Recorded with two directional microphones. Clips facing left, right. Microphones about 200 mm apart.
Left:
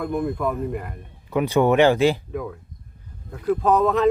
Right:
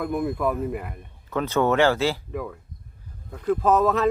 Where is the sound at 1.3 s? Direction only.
15° left (ahead or behind).